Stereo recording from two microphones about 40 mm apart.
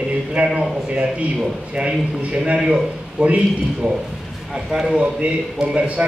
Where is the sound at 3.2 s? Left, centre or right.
Right.